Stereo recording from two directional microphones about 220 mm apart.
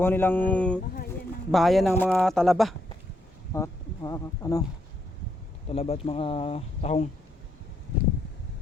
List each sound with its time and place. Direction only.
0.0 s speech: 10° left (ahead or behind)
3.5 s speech: 15° left (ahead or behind)
5.6 s speech: 30° left (ahead or behind)